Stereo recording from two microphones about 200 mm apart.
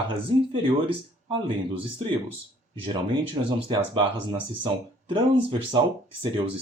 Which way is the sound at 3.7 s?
25° right (ahead or behind).